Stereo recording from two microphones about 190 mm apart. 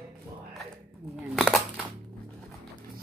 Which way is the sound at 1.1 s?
5° right (ahead or behind).